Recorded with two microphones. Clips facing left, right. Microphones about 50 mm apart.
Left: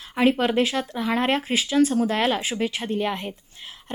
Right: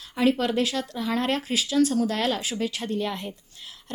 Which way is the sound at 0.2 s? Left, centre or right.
Left.